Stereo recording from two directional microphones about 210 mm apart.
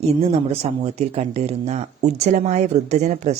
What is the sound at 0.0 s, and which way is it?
Speech, 30° right (ahead or behind).